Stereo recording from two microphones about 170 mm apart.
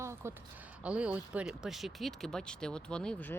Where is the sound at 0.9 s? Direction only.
5° right (ahead or behind).